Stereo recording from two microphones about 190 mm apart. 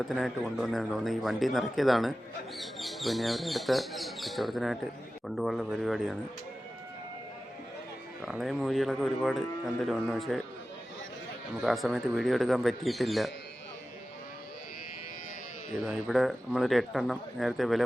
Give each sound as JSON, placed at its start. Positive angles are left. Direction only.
{"t": 0.1, "sound": "speech", "side_deg": 0}
{"t": 8.2, "sound": "speech", "side_deg": 0}
{"t": 11.6, "sound": "speech", "side_deg": 0}
{"t": 15.9, "sound": "speech", "side_deg": 0}